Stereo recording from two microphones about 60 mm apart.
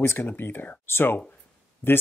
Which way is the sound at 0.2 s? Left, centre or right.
Left.